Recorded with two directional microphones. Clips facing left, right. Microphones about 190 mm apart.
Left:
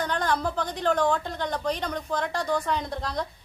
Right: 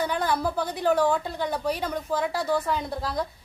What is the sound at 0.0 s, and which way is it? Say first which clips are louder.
A woman's voice: right 1 dB; 10° right (ahead or behind).